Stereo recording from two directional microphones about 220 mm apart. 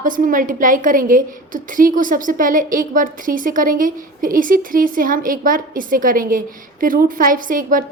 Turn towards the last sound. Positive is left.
turn(degrees=-40)  # may be behind; listen again after turning